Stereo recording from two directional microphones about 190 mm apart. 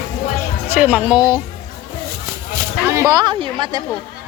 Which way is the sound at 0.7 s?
10° right (ahead or behind).